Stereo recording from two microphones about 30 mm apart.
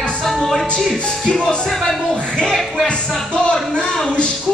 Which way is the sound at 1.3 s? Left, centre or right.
Left.